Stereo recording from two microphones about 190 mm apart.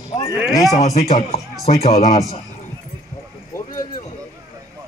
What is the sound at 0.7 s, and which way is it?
Speech, 35° left (ahead or behind).